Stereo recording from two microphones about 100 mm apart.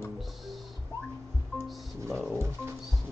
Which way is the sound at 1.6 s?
Centre (ahead or behind).